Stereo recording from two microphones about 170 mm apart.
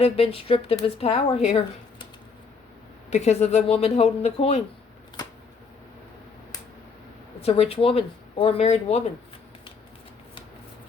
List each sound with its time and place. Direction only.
0.0 s speech: 35° left (ahead or behind)
3.1 s speech: 40° left (ahead or behind)
7.4 s speech: 35° left (ahead or behind)